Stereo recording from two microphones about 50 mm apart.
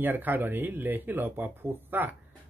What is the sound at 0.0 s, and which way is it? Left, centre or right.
Speech, right.